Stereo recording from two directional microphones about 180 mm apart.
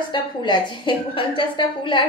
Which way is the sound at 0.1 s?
25° left (ahead or behind).